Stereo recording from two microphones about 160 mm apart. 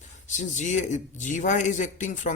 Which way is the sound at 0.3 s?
50° left (ahead or behind).